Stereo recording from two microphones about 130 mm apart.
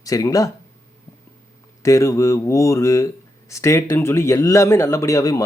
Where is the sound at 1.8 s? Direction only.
25° left (ahead or behind).